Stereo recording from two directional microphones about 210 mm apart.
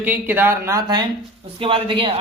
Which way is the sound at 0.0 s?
10° right (ahead or behind).